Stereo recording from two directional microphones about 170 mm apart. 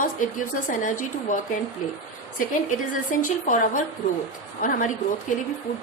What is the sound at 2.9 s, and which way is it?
A woman's voice, 50° left (ahead or behind).